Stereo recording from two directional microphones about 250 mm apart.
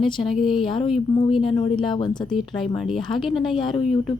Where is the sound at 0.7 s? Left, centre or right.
Left.